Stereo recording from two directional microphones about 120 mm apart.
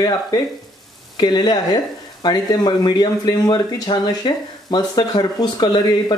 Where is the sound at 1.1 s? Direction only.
35° left (ahead or behind).